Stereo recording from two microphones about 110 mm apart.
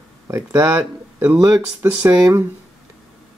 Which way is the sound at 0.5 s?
35° right (ahead or behind).